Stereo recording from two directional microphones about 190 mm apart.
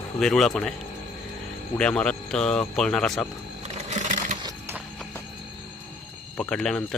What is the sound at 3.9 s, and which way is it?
Sewing machine, 40° right (ahead or behind).